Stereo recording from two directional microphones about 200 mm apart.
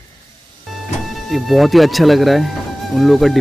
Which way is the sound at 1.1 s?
Centre (ahead or behind).